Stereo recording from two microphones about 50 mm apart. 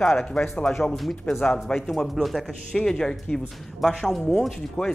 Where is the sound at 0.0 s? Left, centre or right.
Centre.